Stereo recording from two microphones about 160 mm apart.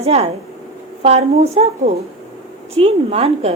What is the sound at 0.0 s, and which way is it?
A woman's voice, 40° right (ahead or behind).